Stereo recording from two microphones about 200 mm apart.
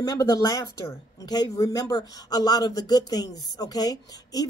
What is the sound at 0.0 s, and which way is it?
Speech, 20° left (ahead or behind).